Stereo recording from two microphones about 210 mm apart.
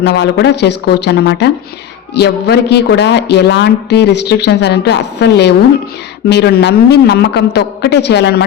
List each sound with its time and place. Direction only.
0.0 s a woman's voice: 55° left (ahead or behind)